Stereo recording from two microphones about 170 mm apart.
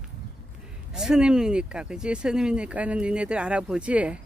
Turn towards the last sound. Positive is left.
turn(degrees=-5)  # may be behind; listen again after turning